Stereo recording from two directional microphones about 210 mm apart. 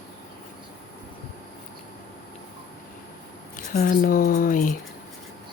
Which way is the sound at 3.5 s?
40° left (ahead or behind).